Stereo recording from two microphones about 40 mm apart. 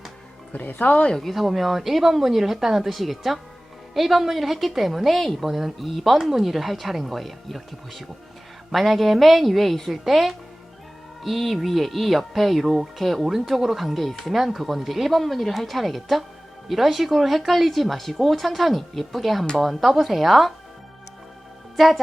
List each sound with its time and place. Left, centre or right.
0.5 s speech: left
1.3 s speech: centre
21.8 s speech: centre